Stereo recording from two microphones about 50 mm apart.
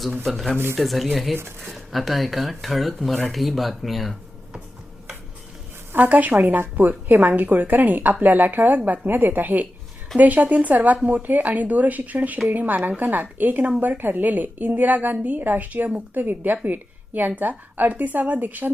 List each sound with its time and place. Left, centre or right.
0.3 s speech: centre
5.9 s a woman's voice: right